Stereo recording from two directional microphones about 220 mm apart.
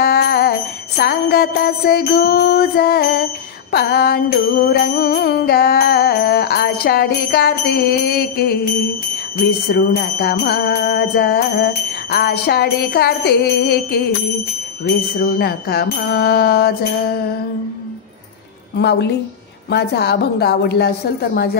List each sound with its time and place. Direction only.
0.0 s jingle bell: 45° left (ahead or behind)
3.7 s music: 45° left (ahead or behind)
9.7 s music: 45° left (ahead or behind)
15.1 s music: 45° left (ahead or behind)
18.8 s music: 50° left (ahead or behind)